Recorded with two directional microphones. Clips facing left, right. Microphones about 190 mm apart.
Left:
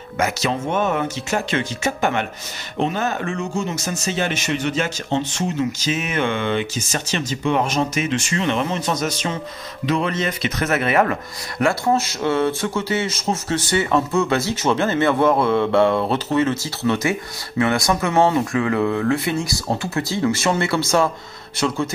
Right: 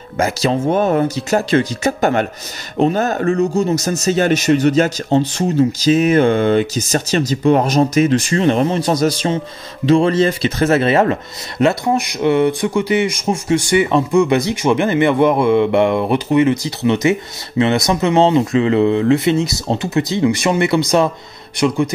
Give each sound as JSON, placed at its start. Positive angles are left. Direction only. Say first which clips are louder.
{"t": 0.2, "sound": "speech", "louder": "right 5 dB", "side_deg": -35}